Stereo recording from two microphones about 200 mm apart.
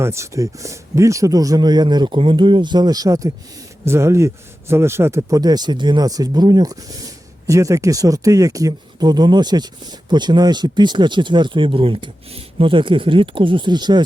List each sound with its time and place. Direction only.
0.0 s speech: 15° right (ahead or behind)